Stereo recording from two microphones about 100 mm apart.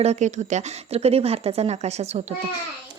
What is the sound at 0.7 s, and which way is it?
A woman's voice, 90° right.